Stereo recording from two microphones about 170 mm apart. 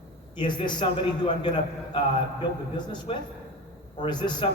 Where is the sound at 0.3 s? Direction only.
25° left (ahead or behind).